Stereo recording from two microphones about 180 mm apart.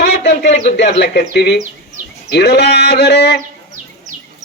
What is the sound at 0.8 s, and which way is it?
Sheep, 70° left (ahead or behind).